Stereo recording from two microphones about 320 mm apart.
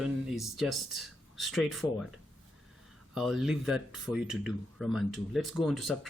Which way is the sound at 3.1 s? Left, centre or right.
Centre.